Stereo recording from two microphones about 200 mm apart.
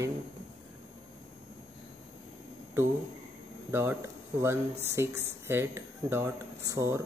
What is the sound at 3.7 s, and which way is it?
Speech, 15° right (ahead or behind).